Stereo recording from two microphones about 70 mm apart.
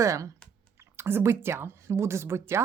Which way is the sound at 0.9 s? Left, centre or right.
Right.